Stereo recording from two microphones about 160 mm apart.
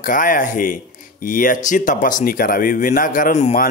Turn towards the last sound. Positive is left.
turn(degrees=50)  # may be behind; listen again after turning